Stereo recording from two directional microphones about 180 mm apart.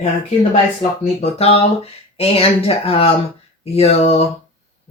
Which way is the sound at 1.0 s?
35° left (ahead or behind).